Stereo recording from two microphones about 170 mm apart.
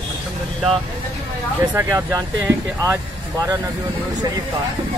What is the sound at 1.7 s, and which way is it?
Speech, 20° right (ahead or behind).